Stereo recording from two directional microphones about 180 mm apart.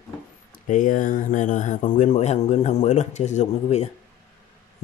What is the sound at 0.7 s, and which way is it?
Speech, 45° left (ahead or behind).